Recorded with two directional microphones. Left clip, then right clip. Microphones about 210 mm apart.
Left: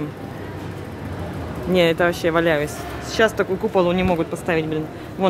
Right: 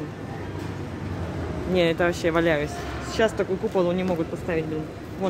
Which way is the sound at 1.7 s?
10° left (ahead or behind).